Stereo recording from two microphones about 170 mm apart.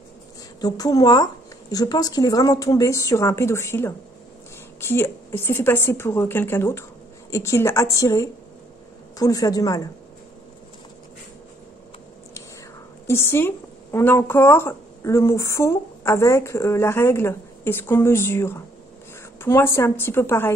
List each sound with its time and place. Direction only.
0.6 s a woman's voice: 20° left (ahead or behind)
13.0 s a woman's voice: 15° left (ahead or behind)